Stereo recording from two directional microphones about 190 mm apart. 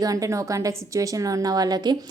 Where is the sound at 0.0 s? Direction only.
20° right (ahead or behind).